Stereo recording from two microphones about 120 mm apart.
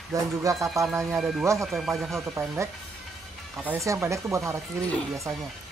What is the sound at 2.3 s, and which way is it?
Speech, 20° right (ahead or behind).